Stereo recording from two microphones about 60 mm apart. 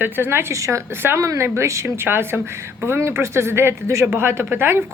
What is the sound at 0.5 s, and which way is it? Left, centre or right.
Speech, right.